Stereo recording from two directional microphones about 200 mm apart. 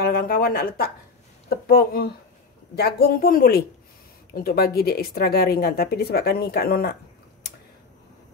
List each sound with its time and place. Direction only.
0.0 s speech: 50° left (ahead or behind)